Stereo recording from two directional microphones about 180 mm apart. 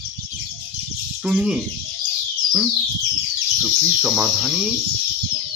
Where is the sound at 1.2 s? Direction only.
5° right (ahead or behind).